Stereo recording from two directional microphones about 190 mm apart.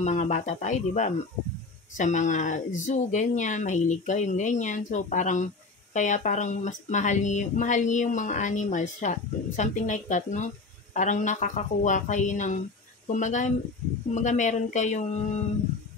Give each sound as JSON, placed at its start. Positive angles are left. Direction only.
{"t": 0.0, "sound": "speech", "side_deg": 40}